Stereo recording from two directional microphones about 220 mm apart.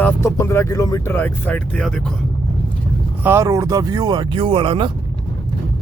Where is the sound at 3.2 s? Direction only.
15° right (ahead or behind).